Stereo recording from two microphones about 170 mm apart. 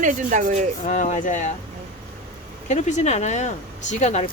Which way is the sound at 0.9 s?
45° left (ahead or behind).